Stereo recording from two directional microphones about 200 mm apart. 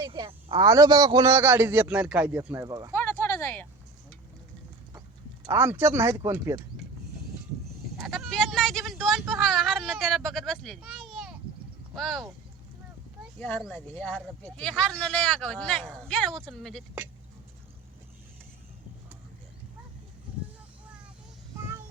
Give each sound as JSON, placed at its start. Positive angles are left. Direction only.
{"t": 0.0, "sound": "a man's voice", "side_deg": -25}
{"t": 2.9, "sound": "a sound", "side_deg": 10}
{"t": 5.5, "sound": "a man's voice", "side_deg": -15}
{"t": 7.9, "sound": "vehicle", "side_deg": 0}
{"t": 9.3, "sound": "a sound", "side_deg": 0}
{"t": 11.9, "sound": "speech", "side_deg": 0}
{"t": 13.4, "sound": "speech", "side_deg": 0}